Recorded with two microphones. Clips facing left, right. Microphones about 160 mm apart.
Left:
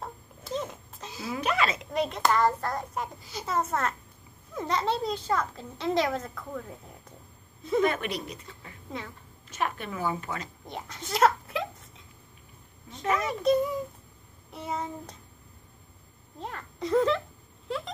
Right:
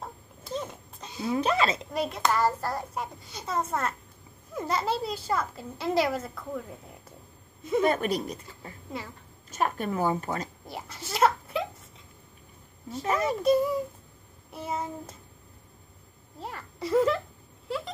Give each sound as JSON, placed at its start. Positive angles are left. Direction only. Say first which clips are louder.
{"t": 0.0, "sound": "a sound", "louder": "left 1 dB", "side_deg": 0}
{"t": 1.3, "sound": "speech", "louder": "right 3 dB", "side_deg": -30}
{"t": 2.0, "sound": "a child's voice", "louder": "left 2 dB", "side_deg": 0}
{"t": 7.8, "sound": "a woman's voice", "louder": "right 2 dB", "side_deg": -40}
{"t": 10.7, "sound": "a child's voice", "louder": "left 6 dB", "side_deg": -5}
{"t": 13.1, "sound": "a woman's voice", "louder": "right 2 dB", "side_deg": -35}
{"t": 14.5, "sound": "a child's voice", "louder": "right 1 dB", "side_deg": -5}
{"t": 16.3, "sound": "a child's voice", "louder": "left 1 dB", "side_deg": -5}
{"t": 17.6, "sound": "a sound", "louder": "right 1 dB", "side_deg": 0}